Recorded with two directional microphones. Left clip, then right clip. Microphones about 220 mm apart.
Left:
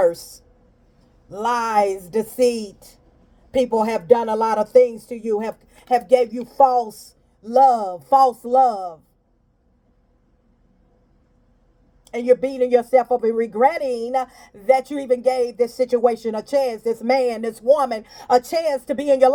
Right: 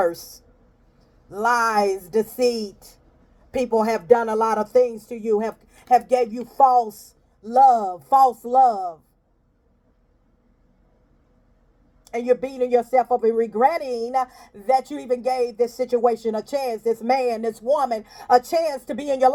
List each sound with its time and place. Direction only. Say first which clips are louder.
0.0 s a woman's voice: left 4 dB; 25° right (ahead or behind)
12.1 s a woman's voice: left 4 dB; 20° right (ahead or behind)